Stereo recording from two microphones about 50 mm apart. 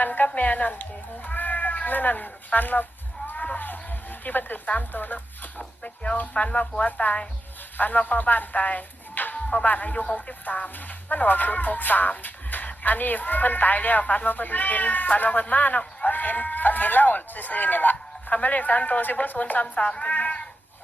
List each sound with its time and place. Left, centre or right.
0.0 s a sound: left
0.3 s speech: left
19.6 s speech: left
20.1 s speech: left